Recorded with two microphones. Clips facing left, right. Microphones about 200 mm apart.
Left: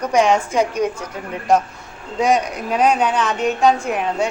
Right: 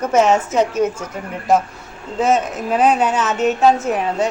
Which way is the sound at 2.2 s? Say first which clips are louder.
Right 1 dB; 5° right (ahead or behind).